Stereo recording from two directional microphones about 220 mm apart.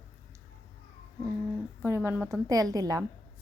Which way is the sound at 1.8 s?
10° right (ahead or behind).